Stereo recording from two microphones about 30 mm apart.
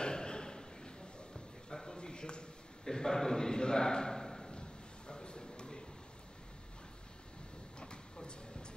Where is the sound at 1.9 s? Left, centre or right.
Left.